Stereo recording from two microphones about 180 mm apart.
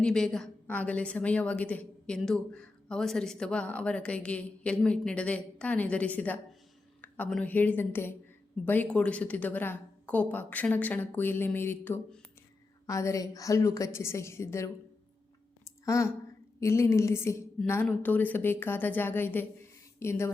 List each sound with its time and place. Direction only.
0.0 s a woman's voice: 5° left (ahead or behind)
15.6 s a sound: 15° left (ahead or behind)
16.6 s a woman's voice: 15° left (ahead or behind)